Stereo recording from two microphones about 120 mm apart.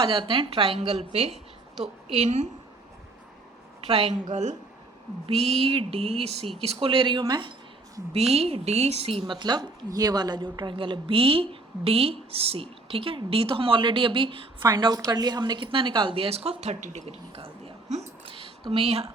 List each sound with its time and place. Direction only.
0.0 s a woman's voice: 45° right (ahead or behind)
0.8 s a sound: 60° right (ahead or behind)
1.7 s a woman's voice: 5° right (ahead or behind)
2.1 s a woman's voice: 70° right (ahead or behind)
3.8 s a woman's voice: 60° right (ahead or behind); by 4.5 s 80° right
5.2 s a sound: 55° right (ahead or behind)
6.6 s a woman's voice: 55° right (ahead or behind)
8.3 s a woman's voice: 55° right (ahead or behind)
17.8 s speech: 70° right (ahead or behind)
18.3 s a sound: 50° right (ahead or behind)